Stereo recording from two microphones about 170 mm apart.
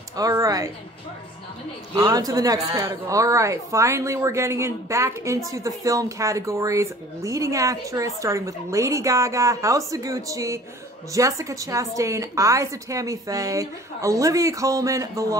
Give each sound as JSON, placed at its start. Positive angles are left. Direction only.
{"t": 0.1, "sound": "speech", "side_deg": -20}
{"t": 2.0, "sound": "speech", "side_deg": -20}